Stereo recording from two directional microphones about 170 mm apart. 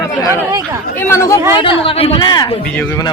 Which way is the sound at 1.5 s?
30° left (ahead or behind).